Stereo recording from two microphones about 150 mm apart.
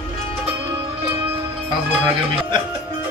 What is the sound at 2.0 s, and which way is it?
Speech, 40° right (ahead or behind).